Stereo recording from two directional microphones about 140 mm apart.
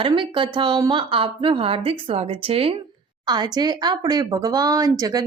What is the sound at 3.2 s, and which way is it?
Speech, 30° right (ahead or behind).